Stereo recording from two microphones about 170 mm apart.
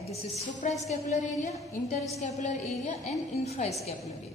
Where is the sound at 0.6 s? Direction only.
45° left (ahead or behind).